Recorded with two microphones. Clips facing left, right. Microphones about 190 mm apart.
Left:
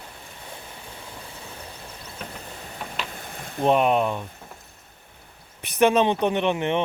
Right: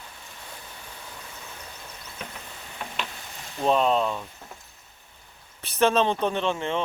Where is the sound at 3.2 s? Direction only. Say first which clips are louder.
Left 4 dB; 55° left (ahead or behind).